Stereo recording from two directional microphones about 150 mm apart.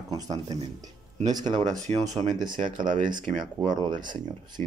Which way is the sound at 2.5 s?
65° right (ahead or behind).